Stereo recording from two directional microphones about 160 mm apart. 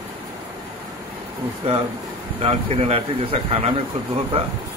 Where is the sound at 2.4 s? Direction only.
40° right (ahead or behind).